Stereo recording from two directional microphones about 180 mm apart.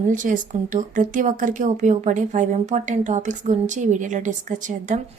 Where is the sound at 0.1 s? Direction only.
45° right (ahead or behind).